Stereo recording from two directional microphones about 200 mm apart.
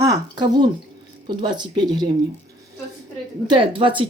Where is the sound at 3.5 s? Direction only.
25° right (ahead or behind).